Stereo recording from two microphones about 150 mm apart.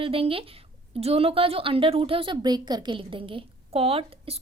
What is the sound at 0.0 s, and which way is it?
A woman's voice, 40° right (ahead or behind).